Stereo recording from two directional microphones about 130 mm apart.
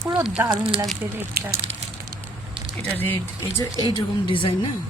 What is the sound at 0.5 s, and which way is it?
Speech, 45° right (ahead or behind).